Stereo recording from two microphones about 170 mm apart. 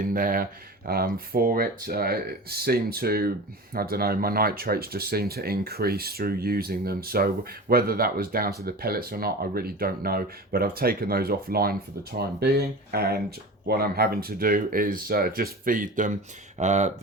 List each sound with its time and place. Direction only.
0.0 s speech: 55° right (ahead or behind)